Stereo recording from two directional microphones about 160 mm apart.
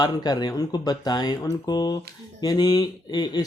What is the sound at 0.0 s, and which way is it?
A man's voice, 25° left (ahead or behind).